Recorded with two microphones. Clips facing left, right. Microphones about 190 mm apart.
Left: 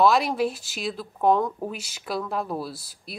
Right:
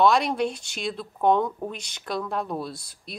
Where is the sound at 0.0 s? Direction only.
Centre (ahead or behind).